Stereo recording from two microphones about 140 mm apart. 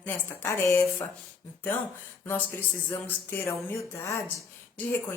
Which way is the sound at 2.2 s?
15° left (ahead or behind).